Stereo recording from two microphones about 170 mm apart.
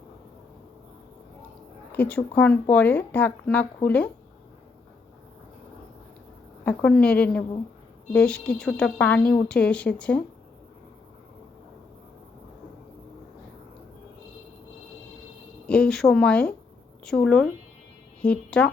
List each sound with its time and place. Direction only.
1.9 s speech: 10° left (ahead or behind)
6.7 s speech: 5° left (ahead or behind)
15.6 s speech: 5° left (ahead or behind)